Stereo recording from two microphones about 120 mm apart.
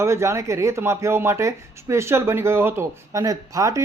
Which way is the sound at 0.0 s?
25° right (ahead or behind).